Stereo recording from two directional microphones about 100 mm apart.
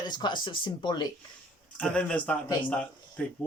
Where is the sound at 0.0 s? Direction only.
50° left (ahead or behind).